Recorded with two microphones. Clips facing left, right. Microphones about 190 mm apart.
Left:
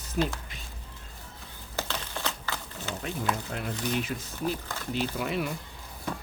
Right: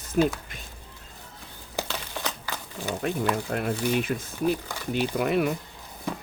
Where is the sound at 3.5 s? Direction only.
55° right (ahead or behind).